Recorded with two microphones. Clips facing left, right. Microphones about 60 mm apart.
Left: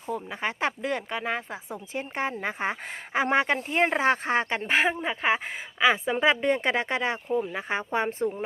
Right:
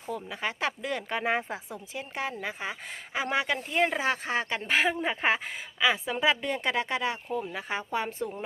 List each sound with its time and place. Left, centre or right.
0.1 s a woman's voice: left
1.1 s speech: centre
1.7 s a woman's voice: left